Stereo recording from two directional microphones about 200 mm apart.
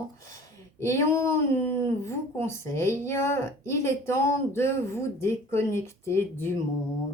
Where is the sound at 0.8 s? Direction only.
15° left (ahead or behind).